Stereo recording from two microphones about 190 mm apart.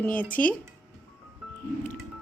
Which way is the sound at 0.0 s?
10° left (ahead or behind).